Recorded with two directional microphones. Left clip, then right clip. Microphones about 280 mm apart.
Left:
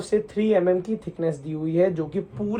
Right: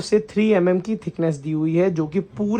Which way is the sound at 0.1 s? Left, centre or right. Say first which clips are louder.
Right 3 dB; right.